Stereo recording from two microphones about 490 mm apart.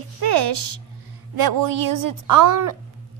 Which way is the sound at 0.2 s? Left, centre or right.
Right.